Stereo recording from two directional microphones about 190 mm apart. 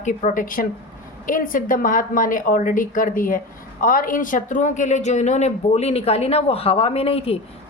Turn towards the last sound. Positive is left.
turn(degrees=30)  # may be behind; listen again after turning